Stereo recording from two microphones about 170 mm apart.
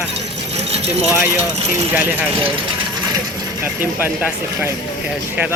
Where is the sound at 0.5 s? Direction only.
40° right (ahead or behind).